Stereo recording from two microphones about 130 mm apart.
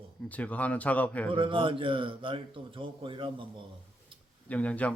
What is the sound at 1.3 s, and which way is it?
A man's voice, 40° right (ahead or behind).